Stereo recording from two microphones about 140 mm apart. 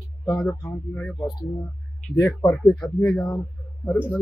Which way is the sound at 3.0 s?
25° left (ahead or behind).